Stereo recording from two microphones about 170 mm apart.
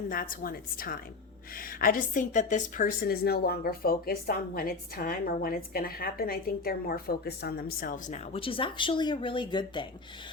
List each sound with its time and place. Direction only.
0.1 s a woman's voice: 55° left (ahead or behind); by 9.8 s 25° left (ahead or behind)